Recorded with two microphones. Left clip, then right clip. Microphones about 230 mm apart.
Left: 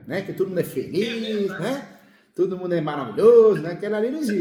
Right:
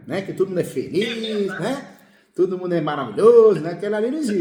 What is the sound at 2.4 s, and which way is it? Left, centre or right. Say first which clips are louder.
A man's voice: right 2 dB; centre.